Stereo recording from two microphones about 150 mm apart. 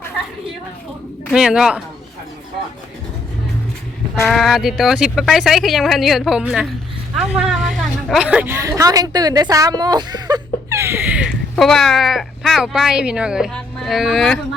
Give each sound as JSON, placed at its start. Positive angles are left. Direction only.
{"t": 1.3, "sound": "speech", "side_deg": -5}
{"t": 4.3, "sound": "a woman's voice", "side_deg": 0}
{"t": 11.5, "sound": "speech", "side_deg": 5}